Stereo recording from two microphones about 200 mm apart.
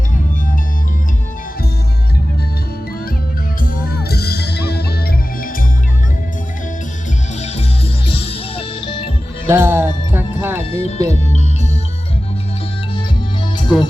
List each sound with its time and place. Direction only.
3.6 s music: 45° left (ahead or behind)
8.2 s music: 30° left (ahead or behind)
9.5 s music: 10° right (ahead or behind)
10.7 s music: 30° left (ahead or behind)
13.7 s speech: centre (ahead or behind)